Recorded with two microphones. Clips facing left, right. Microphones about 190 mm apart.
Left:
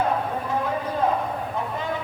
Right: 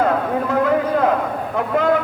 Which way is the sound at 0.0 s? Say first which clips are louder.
Right 6 dB; 85° right.